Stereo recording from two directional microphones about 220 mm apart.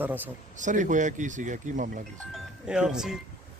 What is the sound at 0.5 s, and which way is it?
Speech, 35° right (ahead or behind).